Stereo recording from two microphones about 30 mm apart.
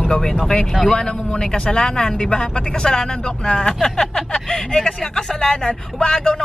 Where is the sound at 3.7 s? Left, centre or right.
Centre.